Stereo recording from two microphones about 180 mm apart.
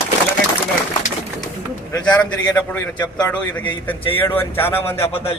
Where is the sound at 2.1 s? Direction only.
10° left (ahead or behind).